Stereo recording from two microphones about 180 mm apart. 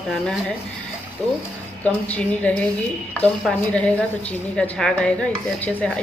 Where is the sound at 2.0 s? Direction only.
10° left (ahead or behind).